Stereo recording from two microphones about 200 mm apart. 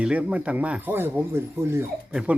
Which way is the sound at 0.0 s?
5° right (ahead or behind).